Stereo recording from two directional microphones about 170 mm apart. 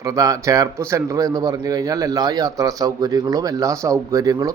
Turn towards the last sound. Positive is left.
turn(degrees=-20)  # may be behind; listen again after turning